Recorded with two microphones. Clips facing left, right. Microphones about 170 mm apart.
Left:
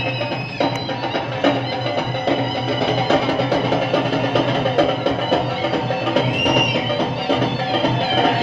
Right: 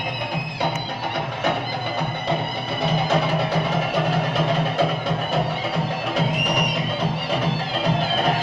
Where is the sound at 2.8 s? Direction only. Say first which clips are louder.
Left 3 dB; 70° left (ahead or behind).